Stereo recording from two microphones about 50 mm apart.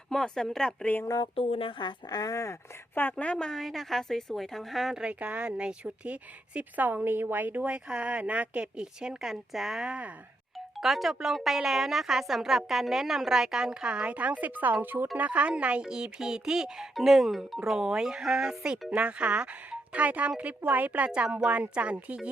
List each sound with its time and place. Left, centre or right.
0.1 s speech: centre
2.3 s speech: left
2.9 s a woman's voice: left
3.3 s a woman's voice: centre
4.9 s a child's voice: right
6.1 s speech: right
7.7 s a child's voice: right
8.6 s speech: centre; by 15.0 s right
15.1 s a child's voice: right
18.9 s a child's voice: right